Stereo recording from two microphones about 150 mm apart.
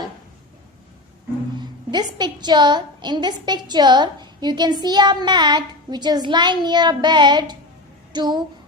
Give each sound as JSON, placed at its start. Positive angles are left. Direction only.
{"t": 1.5, "sound": "a woman's voice", "side_deg": -30}